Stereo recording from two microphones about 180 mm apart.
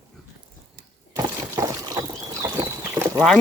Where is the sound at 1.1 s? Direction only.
15° right (ahead or behind).